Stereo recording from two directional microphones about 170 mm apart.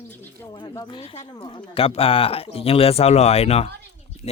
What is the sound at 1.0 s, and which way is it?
Speech, 35° left (ahead or behind).